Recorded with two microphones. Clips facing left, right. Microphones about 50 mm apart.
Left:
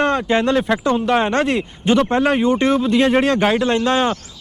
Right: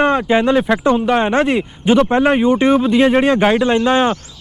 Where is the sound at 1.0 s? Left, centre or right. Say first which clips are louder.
Right 2 dB; centre.